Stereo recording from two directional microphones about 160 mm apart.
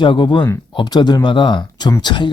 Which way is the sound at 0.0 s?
30° left (ahead or behind).